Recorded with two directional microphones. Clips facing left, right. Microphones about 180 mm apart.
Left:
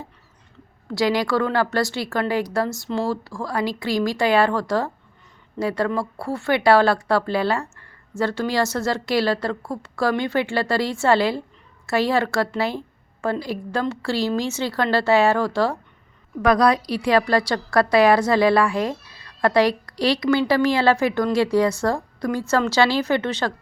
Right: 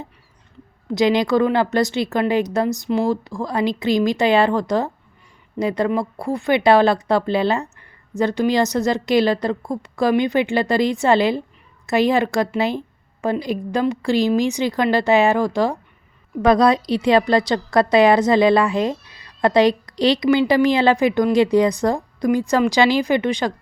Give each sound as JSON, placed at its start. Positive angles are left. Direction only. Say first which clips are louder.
{"t": 0.9, "sound": "a woman's voice", "louder": "right 4 dB", "side_deg": -20}